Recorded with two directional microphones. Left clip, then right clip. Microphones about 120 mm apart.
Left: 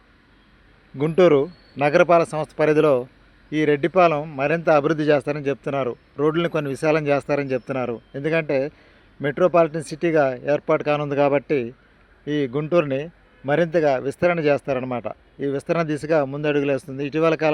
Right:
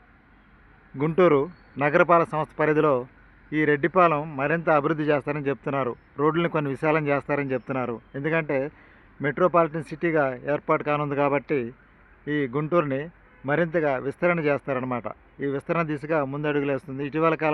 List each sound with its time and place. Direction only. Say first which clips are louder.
0.9 s a man's voice: left 4 dB; 25° left (ahead or behind)